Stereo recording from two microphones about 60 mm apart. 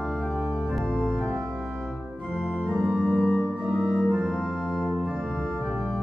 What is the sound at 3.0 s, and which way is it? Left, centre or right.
Organ, centre.